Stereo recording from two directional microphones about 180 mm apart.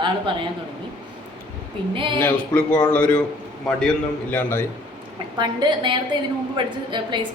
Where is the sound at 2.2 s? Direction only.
10° left (ahead or behind).